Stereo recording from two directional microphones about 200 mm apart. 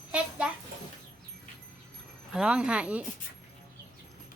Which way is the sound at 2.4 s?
5° right (ahead or behind).